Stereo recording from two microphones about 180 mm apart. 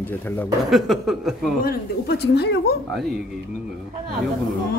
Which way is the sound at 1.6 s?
60° left (ahead or behind).